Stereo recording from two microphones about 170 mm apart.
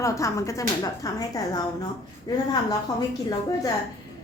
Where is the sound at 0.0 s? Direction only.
20° left (ahead or behind).